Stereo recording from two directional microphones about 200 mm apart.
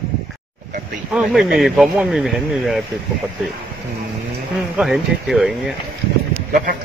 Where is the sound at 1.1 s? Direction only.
Centre (ahead or behind).